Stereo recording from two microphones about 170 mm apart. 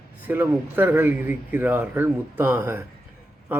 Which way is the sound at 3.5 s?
10° right (ahead or behind).